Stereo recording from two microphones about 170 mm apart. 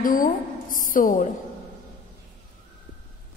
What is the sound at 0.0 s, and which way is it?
A woman's voice, 55° left (ahead or behind).